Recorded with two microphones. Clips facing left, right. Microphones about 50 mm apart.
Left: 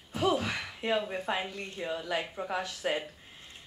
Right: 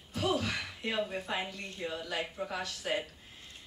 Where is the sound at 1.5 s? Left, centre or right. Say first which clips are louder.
Left 3 dB; left.